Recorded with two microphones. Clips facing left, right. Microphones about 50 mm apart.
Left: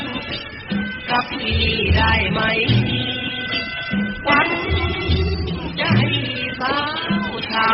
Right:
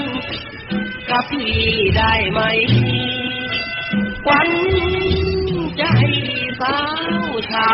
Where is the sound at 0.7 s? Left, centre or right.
Right.